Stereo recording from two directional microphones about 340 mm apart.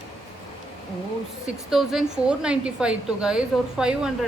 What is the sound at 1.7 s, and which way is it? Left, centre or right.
A woman's voice, centre.